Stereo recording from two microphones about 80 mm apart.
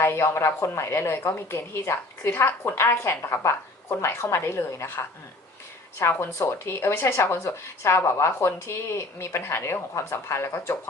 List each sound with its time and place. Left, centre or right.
0.0 s a woman's voice: left